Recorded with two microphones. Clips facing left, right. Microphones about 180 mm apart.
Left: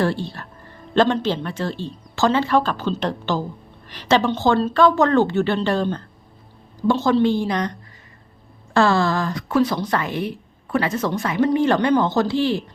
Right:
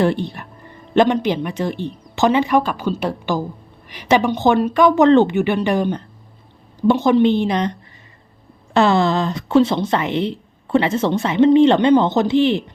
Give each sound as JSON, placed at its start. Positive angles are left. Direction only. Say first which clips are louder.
{"t": 0.0, "sound": "a woman's voice", "louder": "right 4 dB", "side_deg": -20}